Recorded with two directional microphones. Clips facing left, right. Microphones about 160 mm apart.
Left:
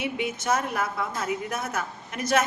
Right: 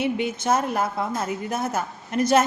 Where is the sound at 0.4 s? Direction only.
30° right (ahead or behind).